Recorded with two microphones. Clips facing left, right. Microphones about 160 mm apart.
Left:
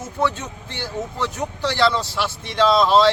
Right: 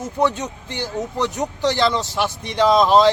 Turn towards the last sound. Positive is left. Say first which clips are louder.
# right 1 dB
turn(degrees=-15)  # may be behind; listen again after turning